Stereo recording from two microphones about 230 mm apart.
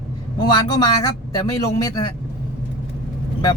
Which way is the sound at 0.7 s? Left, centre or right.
Centre.